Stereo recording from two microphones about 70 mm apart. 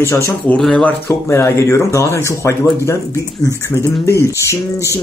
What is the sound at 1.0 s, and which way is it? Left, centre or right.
Speech, left.